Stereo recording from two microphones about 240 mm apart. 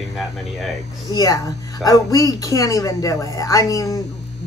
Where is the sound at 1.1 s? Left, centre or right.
Centre.